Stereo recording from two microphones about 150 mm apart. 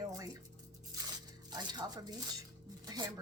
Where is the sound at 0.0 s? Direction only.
25° right (ahead or behind).